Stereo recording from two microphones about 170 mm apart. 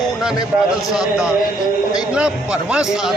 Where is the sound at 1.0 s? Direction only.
5° right (ahead or behind).